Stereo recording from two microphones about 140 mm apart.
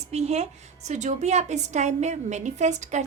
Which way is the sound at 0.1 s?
50° right (ahead or behind).